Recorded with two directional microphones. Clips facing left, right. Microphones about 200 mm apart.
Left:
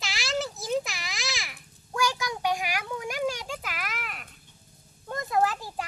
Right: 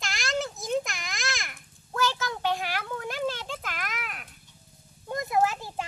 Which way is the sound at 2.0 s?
15° left (ahead or behind).